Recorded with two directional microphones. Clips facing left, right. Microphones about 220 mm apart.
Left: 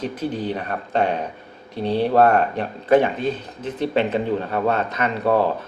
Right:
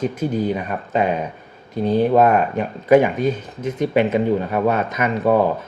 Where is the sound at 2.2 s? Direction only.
10° right (ahead or behind).